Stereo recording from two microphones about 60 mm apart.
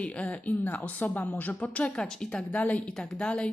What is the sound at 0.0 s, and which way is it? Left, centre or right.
Speech, left.